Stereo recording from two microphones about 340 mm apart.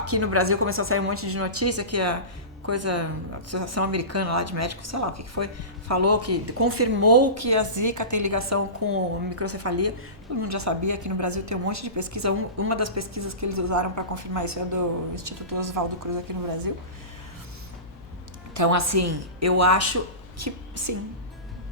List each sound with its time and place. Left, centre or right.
0.0 s a woman's voice: right
18.5 s a woman's voice: right